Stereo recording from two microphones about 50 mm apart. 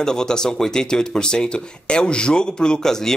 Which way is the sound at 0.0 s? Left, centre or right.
Centre.